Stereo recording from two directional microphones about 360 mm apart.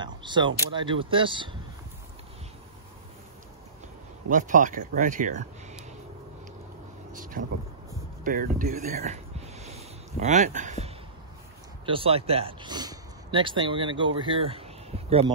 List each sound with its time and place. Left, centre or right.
0.0 s speech: centre
4.3 s speech: right
7.2 s speech: right
8.2 s a sound: right
11.8 s speech: centre
15.0 s speech: centre